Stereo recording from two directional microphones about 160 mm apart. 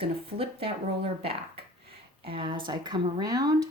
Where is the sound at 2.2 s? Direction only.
30° right (ahead or behind).